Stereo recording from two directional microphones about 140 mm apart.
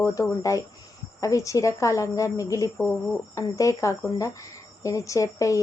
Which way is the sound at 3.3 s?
20° left (ahead or behind).